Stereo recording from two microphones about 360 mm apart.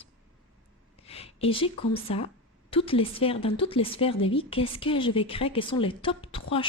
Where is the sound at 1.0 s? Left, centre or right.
Centre.